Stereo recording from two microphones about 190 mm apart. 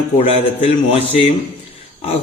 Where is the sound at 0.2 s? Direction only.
30° left (ahead or behind).